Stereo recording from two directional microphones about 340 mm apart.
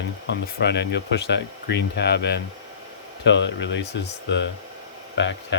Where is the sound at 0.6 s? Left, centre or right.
Left.